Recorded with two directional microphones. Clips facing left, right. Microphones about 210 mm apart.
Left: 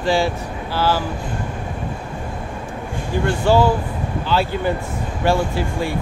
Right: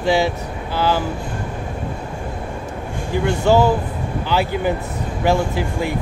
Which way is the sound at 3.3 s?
15° right (ahead or behind).